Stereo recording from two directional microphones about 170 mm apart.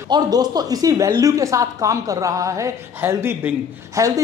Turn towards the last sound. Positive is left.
turn(degrees=-15)  # may be behind; listen again after turning